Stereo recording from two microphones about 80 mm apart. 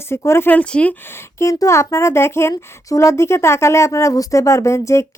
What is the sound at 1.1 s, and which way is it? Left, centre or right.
Speech, left.